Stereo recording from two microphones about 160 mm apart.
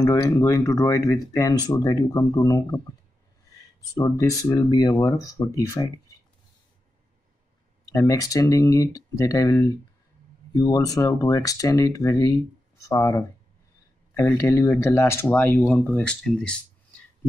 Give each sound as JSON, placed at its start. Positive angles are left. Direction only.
{"t": 0.0, "sound": "speech", "side_deg": 20}
{"t": 4.0, "sound": "speech", "side_deg": 20}
{"t": 7.8, "sound": "speech", "side_deg": 20}